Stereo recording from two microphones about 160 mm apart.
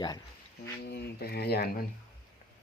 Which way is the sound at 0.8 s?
90° left.